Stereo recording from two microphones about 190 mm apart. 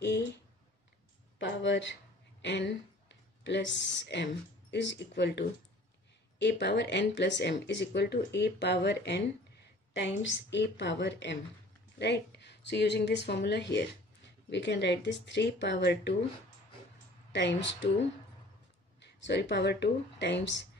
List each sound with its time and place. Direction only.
0.0 s a sound: 65° left (ahead or behind)
1.4 s speech: 70° left (ahead or behind)
17.3 s speech: 70° left (ahead or behind)
19.0 s speech: 65° left (ahead or behind)